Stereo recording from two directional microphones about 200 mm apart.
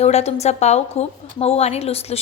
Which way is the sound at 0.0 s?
35° left (ahead or behind).